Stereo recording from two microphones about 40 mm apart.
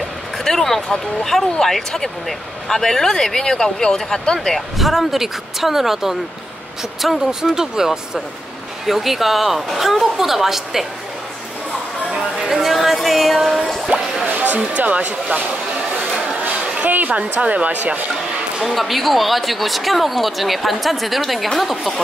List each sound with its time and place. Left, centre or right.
0.4 s speech: centre
4.6 s speech: centre
7.5 s speech: centre
8.8 s speech: centre
12.4 s a sound: centre
13.9 s music: right
14.3 s a sound: right
14.8 s speech: right
16.8 s a sound: right
17.2 s speech: right
18.6 s speech: centre